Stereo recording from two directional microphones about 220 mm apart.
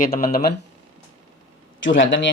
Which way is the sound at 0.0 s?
40° left (ahead or behind).